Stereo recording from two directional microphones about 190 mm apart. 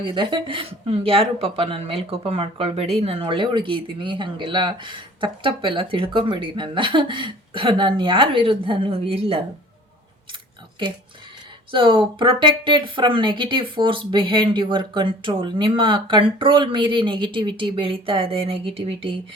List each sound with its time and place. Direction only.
0.0 s speech: 25° right (ahead or behind)
11.7 s speech: 25° right (ahead or behind)